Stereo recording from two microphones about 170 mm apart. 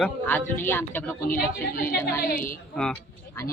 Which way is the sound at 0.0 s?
10° left (ahead or behind).